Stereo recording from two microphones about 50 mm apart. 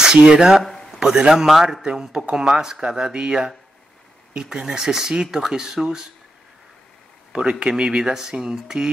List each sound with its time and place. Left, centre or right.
0.0 s a man's voice: centre
1.9 s speech: centre
7.3 s speech: centre